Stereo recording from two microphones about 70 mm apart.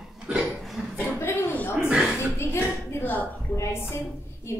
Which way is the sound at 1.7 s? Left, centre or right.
Centre.